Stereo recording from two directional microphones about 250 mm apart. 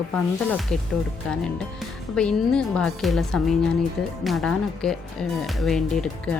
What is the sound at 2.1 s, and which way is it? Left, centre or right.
Speech, centre.